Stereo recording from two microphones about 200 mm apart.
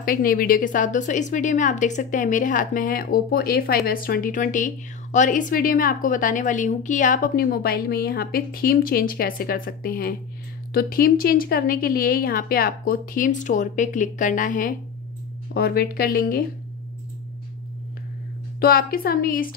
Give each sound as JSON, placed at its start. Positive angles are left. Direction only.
{"t": 0.0, "sound": "a woman's voice", "side_deg": 45}
{"t": 18.6, "sound": "a woman's voice", "side_deg": 50}